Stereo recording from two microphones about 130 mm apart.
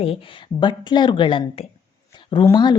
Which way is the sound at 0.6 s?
35° left (ahead or behind).